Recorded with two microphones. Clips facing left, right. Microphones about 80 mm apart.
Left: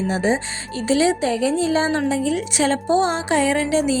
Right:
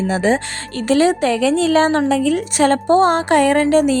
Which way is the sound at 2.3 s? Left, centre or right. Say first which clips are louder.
Right 5 dB; right.